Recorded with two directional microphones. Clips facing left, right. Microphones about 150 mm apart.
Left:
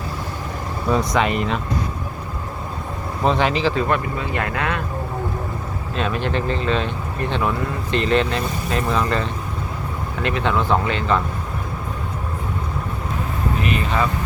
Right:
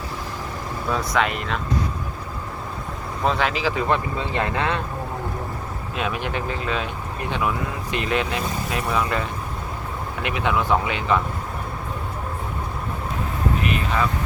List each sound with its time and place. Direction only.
0.9 s speech: centre (ahead or behind)
3.2 s speech: centre (ahead or behind); by 4.8 s 25° right (ahead or behind)
6.0 s speech: 10° right (ahead or behind)
10.2 s speech: 15° right (ahead or behind)